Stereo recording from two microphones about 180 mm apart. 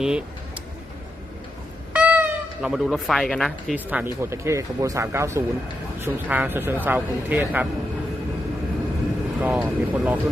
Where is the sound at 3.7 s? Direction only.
10° right (ahead or behind).